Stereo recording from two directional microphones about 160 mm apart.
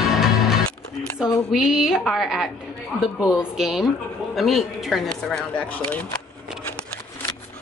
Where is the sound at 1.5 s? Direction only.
5° right (ahead or behind).